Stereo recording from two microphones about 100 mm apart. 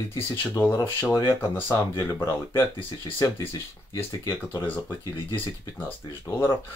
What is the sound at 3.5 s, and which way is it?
Speech, 30° left (ahead or behind).